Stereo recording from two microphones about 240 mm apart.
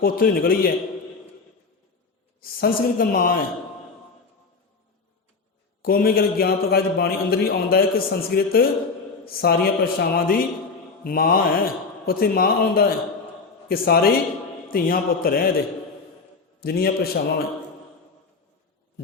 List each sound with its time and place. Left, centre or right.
0.0 s a man's voice: left
2.4 s a man's voice: left
5.8 s a man's voice: left